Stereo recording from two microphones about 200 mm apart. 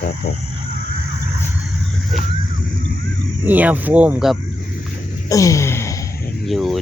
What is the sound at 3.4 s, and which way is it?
Mantra, 10° right (ahead or behind).